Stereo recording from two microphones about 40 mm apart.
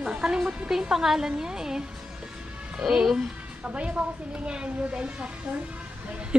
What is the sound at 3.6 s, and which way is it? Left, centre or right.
A woman's voice, right.